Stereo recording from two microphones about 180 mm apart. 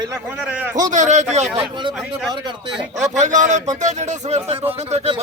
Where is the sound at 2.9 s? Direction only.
40° right (ahead or behind).